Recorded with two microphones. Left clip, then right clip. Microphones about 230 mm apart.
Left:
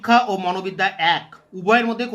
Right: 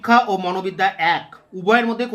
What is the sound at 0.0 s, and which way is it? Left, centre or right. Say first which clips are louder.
Speech: right 1 dB; centre.